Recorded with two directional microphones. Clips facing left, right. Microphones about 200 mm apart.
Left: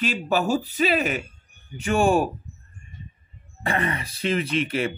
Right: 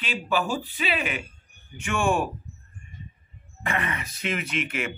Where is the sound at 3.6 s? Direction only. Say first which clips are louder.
Left 4 dB; 35° left (ahead or behind).